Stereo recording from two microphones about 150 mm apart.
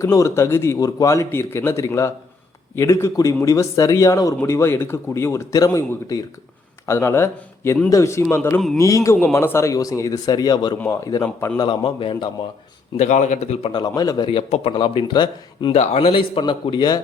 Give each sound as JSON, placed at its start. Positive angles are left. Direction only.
{"t": 0.0, "sound": "a man's voice", "side_deg": 20}
{"t": 11.6, "sound": "speech", "side_deg": 30}
{"t": 13.0, "sound": "a man's voice", "side_deg": 50}
{"t": 13.8, "sound": "speech", "side_deg": 25}
{"t": 15.7, "sound": "speech", "side_deg": 40}